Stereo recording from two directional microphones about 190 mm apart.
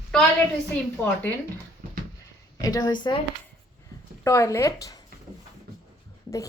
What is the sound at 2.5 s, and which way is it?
Speech, 20° left (ahead or behind).